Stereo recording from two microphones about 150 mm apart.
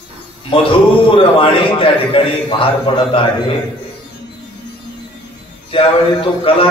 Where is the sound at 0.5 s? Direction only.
35° left (ahead or behind).